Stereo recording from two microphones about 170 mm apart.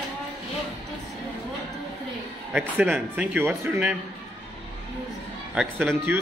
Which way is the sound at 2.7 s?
10° right (ahead or behind).